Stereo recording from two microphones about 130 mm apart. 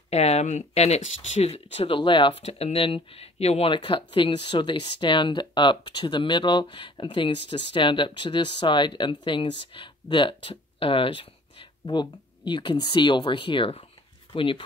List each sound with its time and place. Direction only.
0.1 s speech: 55° left (ahead or behind)